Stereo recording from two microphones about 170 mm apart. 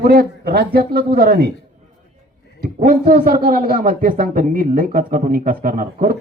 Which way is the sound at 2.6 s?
55° right (ahead or behind).